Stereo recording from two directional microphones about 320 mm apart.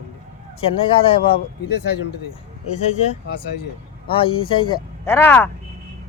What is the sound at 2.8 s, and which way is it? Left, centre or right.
Speech, left.